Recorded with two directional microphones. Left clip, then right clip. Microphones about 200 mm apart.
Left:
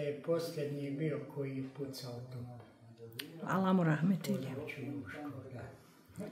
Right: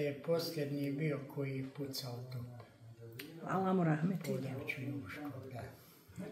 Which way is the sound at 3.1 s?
25° left (ahead or behind).